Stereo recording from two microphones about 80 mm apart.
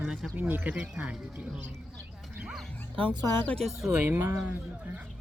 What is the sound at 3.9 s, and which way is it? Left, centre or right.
Speech, right.